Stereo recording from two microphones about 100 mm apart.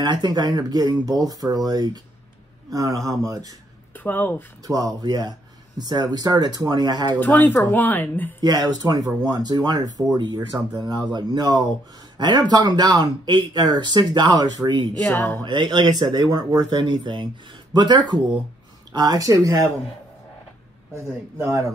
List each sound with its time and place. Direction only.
0.0 s speech: 45° right (ahead or behind)
3.9 s speech: 20° left (ahead or behind)
4.6 s speech: 40° right (ahead or behind)
7.2 s speech: 20° left (ahead or behind)
8.4 s speech: 45° right (ahead or behind)
15.0 s speech: 20° left (ahead or behind)
15.4 s speech: 50° right (ahead or behind); by 19.7 s 35° right (ahead or behind)
20.9 s speech: 30° right (ahead or behind)